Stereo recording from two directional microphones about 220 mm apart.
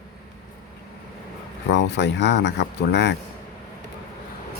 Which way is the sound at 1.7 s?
50° left (ahead or behind).